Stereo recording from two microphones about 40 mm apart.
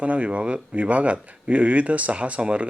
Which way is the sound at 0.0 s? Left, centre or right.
Right.